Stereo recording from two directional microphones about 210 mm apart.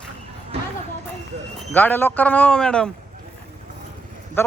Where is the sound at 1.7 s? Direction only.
10° left (ahead or behind).